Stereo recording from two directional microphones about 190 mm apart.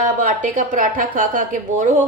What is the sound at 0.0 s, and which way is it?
A woman's voice, 45° right (ahead or behind).